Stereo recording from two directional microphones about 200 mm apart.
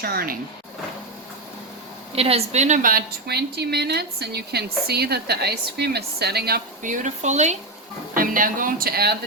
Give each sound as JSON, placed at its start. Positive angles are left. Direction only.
{"t": 0.0, "sound": "a woman's voice", "side_deg": -50}
{"t": 2.1, "sound": "a woman's voice", "side_deg": -30}